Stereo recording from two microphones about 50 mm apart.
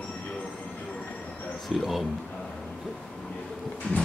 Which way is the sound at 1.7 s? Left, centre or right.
Centre.